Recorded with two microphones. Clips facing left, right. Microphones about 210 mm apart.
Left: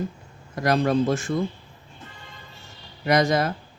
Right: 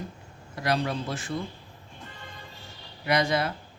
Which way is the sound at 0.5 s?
45° left (ahead or behind).